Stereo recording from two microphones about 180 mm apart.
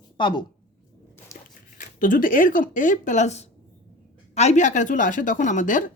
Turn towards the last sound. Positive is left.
turn(degrees=45)  # may be behind; listen again after turning